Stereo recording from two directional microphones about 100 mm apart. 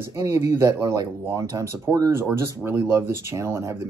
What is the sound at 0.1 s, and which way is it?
Speech, 35° right (ahead or behind).